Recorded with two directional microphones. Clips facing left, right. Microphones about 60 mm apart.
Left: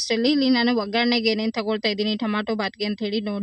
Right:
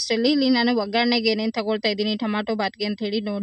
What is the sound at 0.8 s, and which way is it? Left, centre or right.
A woman's voice, right.